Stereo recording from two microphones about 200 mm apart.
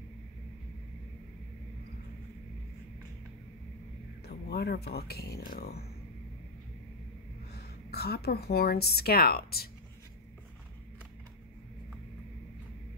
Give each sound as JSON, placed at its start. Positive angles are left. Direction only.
{"t": 4.3, "sound": "speech", "side_deg": 50}
{"t": 7.5, "sound": "a woman's voice", "side_deg": 50}